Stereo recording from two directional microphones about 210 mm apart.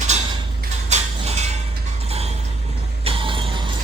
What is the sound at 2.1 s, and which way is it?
Mechanisms, 30° right (ahead or behind).